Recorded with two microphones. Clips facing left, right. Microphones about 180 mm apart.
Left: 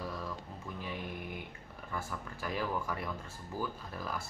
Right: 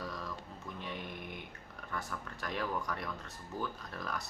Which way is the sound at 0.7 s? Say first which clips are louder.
Left 2 dB; 5° left (ahead or behind).